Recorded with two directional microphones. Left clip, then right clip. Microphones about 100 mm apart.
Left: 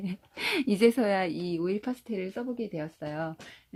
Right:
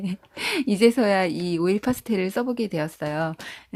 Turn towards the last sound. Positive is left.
turn(degrees=-35)  # may be behind; listen again after turning